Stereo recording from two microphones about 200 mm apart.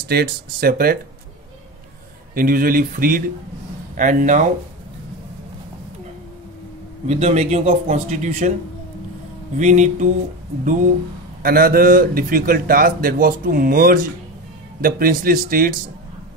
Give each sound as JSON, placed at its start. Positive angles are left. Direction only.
{"t": 0.1, "sound": "a man's voice", "side_deg": -50}
{"t": 2.3, "sound": "a man's voice", "side_deg": -45}
{"t": 7.1, "sound": "a man's voice", "side_deg": -35}
{"t": 9.6, "sound": "a man's voice", "side_deg": -35}
{"t": 11.4, "sound": "a man's voice", "side_deg": -45}